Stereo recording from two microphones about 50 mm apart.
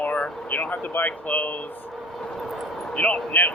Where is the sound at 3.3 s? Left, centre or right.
Left.